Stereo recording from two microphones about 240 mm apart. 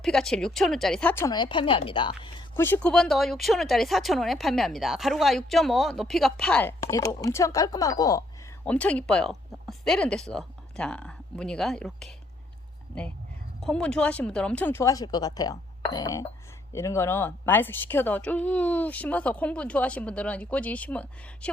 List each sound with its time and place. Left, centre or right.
0.0 s a woman's voice: centre
2.6 s speech: centre
13.6 s a woman's voice: centre